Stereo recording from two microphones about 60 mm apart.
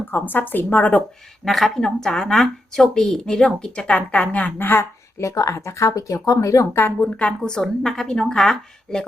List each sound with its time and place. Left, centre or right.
0.1 s speech: left
1.5 s speech: centre
3.9 s speech: left
5.2 s speech: left
6.7 s speech: left
7.2 s speech: centre